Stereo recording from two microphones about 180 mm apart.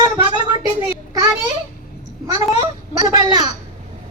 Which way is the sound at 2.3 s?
20° right (ahead or behind).